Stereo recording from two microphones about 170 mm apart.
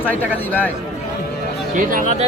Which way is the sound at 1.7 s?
50° right (ahead or behind).